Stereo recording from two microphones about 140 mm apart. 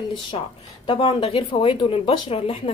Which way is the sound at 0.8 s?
40° left (ahead or behind).